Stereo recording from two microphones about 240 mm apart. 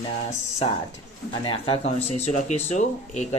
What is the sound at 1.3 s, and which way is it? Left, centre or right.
Speech, left.